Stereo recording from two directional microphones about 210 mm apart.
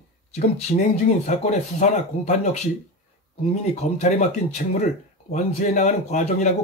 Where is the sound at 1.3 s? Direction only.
35° left (ahead or behind).